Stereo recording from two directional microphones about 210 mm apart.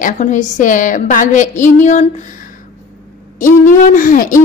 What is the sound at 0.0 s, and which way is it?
A woman's voice, 35° left (ahead or behind).